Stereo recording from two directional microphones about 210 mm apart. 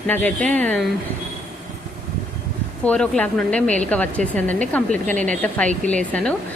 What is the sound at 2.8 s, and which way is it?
A woman's voice, 5° left (ahead or behind).